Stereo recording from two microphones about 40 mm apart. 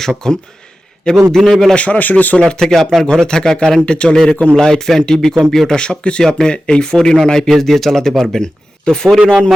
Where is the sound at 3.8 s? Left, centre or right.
Left.